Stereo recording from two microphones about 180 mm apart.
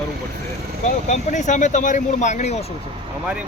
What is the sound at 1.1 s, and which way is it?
Speech, 40° left (ahead or behind).